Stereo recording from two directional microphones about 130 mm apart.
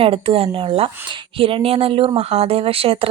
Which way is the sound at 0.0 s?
45° right (ahead or behind).